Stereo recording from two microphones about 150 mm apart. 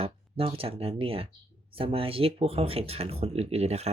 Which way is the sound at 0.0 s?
40° right (ahead or behind).